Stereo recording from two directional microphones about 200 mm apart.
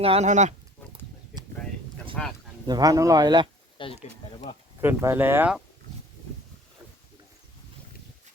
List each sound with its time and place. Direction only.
0.0 s speech: 30° right (ahead or behind)
2.6 s speech: 20° right (ahead or behind)
3.8 s speech: 25° left (ahead or behind)
4.8 s speech: 10° right (ahead or behind)